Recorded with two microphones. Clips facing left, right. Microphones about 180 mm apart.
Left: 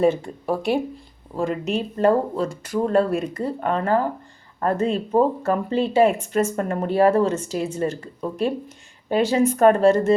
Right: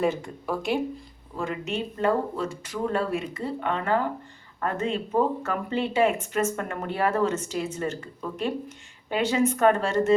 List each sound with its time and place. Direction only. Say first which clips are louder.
0.0 s speech: left 6 dB; 30° left (ahead or behind)